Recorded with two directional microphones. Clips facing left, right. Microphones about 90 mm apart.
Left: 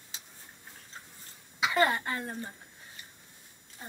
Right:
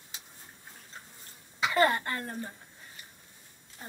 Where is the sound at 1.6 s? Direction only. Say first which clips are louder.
Right 1 dB; 15° left (ahead or behind).